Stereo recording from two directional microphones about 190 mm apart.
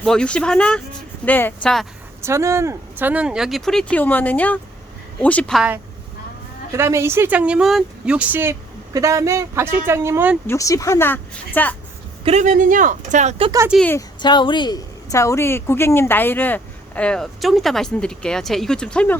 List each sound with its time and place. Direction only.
0.0 s a woman's voice: 5° left (ahead or behind)
2.2 s a woman's voice: 15° right (ahead or behind); by 5.6 s 5° left (ahead or behind)
6.7 s speech: 15° right (ahead or behind)
10.4 s a woman's voice: 15° left (ahead or behind)
12.2 s speech: 40° right (ahead or behind)
13.4 s speech: 20° right (ahead or behind)
14.2 s a woman's voice: 25° left (ahead or behind); by 19.1 s 5° left (ahead or behind)